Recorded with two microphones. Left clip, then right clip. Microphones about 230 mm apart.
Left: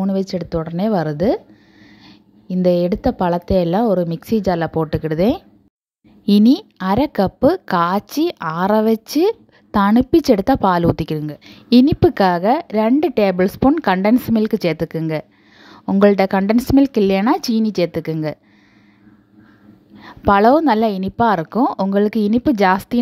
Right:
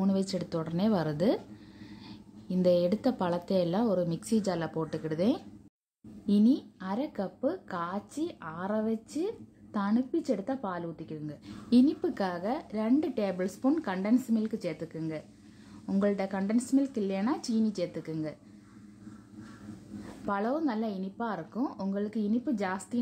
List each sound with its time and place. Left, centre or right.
0.0 s a woman's voice: left
20.2 s a woman's voice: left